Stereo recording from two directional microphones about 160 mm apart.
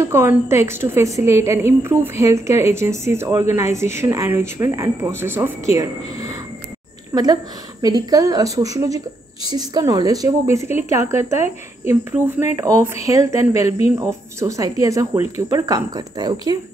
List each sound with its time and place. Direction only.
0.0 s a woman's voice: 15° right (ahead or behind)
13.7 s speech: 40° left (ahead or behind)
13.9 s a woman's voice: 20° right (ahead or behind)